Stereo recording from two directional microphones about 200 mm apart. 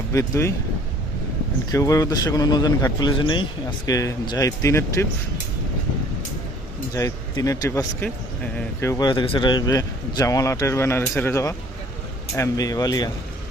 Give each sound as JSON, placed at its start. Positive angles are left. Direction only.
{"t": 0.1, "sound": "a man's voice", "side_deg": 15}
{"t": 1.7, "sound": "a man's voice", "side_deg": 15}
{"t": 6.9, "sound": "a man's voice", "side_deg": 15}